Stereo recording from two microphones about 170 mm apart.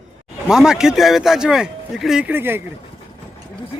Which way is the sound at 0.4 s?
5° right (ahead or behind).